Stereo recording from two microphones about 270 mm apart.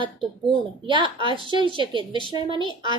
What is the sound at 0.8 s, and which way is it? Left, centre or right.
A woman's voice, centre.